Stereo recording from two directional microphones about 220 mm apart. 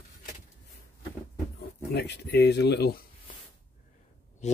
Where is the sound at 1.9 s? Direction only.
50° left (ahead or behind).